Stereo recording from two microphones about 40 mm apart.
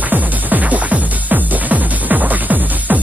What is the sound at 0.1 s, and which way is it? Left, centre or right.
Music, right.